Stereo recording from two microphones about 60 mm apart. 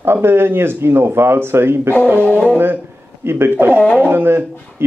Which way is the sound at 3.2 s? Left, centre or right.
Right.